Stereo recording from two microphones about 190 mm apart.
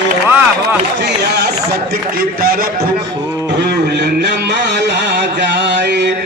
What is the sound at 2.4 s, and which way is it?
Speech, 50° right (ahead or behind).